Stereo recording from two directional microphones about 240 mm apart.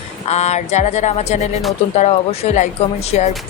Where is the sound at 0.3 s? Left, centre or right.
Left.